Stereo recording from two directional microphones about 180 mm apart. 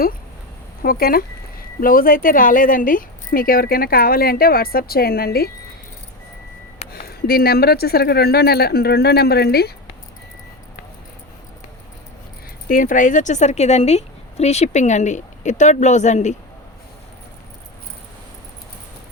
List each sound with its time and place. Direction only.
0.8 s speech: 55° left (ahead or behind)
6.9 s speech: 60° left (ahead or behind)
12.6 s speech: 50° left (ahead or behind)